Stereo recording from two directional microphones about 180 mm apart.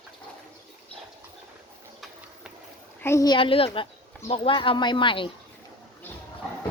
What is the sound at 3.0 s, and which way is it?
Speech, 15° left (ahead or behind).